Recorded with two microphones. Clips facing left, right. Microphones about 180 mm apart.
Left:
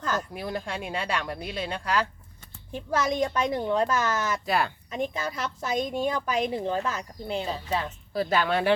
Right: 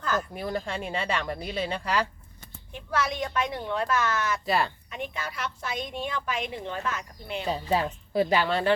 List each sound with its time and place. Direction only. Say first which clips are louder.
0.3 s speech: right 1 dB; centre (ahead or behind)
2.7 s a woman's voice: left 3 dB; 40° left (ahead or behind)
4.4 s speech: even; centre (ahead or behind)
4.9 s a woman's voice: left 5 dB; 40° left (ahead or behind)
7.7 s speech: right 5 dB; 35° right (ahead or behind)
8.1 s speech: right 2 dB; 15° right (ahead or behind)